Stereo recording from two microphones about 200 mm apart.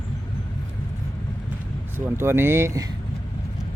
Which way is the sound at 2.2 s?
10° right (ahead or behind).